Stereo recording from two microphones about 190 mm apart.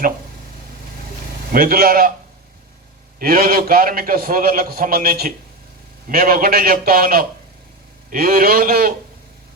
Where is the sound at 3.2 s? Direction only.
50° right (ahead or behind).